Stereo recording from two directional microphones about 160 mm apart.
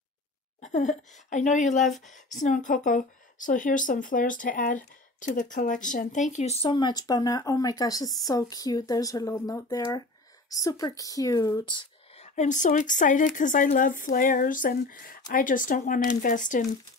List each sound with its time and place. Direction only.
0.6 s a woman's voice: 45° left (ahead or behind); by 11.8 s 25° left (ahead or behind)
12.2 s a woman's voice: 50° left (ahead or behind)